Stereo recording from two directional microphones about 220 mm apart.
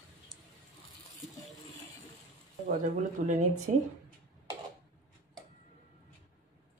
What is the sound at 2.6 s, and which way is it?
Speech, 35° right (ahead or behind).